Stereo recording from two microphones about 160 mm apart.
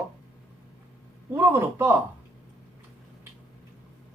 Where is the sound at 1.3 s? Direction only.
15° right (ahead or behind).